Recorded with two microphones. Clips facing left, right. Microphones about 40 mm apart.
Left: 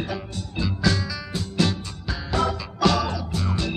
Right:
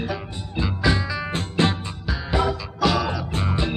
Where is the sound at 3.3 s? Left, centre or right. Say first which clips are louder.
Right 2 dB; right.